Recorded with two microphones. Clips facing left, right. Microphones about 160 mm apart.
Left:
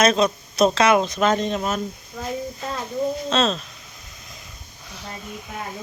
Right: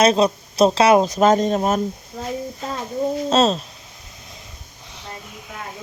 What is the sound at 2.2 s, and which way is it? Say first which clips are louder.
Speech: even; 30° right (ahead or behind).